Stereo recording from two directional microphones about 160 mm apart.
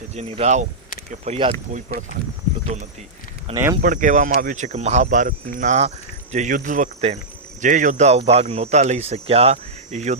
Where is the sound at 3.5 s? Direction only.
40° right (ahead or behind).